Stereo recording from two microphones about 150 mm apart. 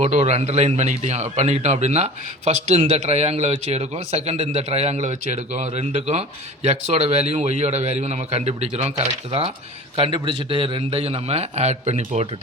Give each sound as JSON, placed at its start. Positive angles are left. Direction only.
{"t": 0.0, "sound": "a man's voice", "side_deg": -45}